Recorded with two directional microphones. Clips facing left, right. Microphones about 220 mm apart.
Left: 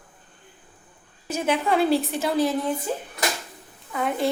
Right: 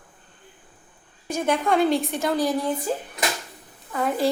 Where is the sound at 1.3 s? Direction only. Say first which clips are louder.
Right 1 dB; 5° left (ahead or behind).